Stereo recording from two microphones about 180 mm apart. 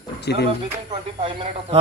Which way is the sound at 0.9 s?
30° right (ahead or behind).